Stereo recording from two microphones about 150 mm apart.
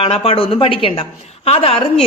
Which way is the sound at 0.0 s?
40° left (ahead or behind).